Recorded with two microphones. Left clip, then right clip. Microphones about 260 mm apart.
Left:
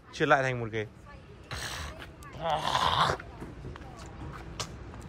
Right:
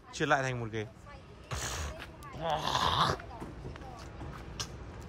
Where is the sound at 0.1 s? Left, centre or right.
Centre.